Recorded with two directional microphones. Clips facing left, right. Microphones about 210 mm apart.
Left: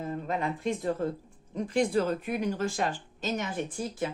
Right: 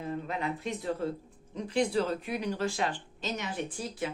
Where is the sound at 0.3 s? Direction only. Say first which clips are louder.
Left 4 dB; 50° left (ahead or behind).